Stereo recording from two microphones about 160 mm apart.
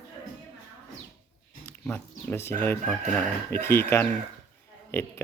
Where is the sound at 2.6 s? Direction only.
15° left (ahead or behind).